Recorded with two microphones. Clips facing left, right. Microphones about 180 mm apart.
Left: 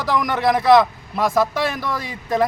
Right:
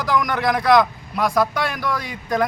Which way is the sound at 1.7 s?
25° left (ahead or behind).